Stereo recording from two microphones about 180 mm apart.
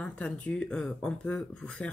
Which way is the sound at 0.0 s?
5° left (ahead or behind).